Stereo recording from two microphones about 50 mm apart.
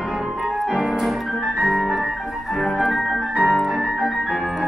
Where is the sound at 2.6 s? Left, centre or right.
Centre.